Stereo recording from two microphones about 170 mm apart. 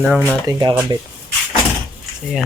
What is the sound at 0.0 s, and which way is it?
Speech, 10° right (ahead or behind).